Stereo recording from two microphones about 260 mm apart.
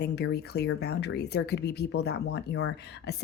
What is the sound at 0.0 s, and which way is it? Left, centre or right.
Speech, left.